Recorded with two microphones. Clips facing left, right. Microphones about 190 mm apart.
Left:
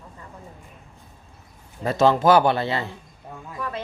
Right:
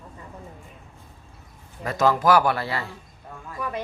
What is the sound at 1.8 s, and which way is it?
Speech, 25° left (ahead or behind).